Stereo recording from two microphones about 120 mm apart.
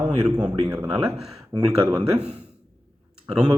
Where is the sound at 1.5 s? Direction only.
45° right (ahead or behind).